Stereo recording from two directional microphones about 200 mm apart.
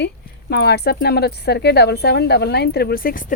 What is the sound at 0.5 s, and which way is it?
Speech, 55° left (ahead or behind).